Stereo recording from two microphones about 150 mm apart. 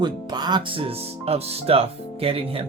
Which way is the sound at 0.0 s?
30° right (ahead or behind).